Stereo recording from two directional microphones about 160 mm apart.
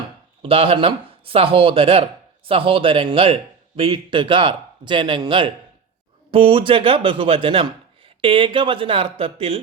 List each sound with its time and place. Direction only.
0.4 s a man's voice: 35° right (ahead or behind)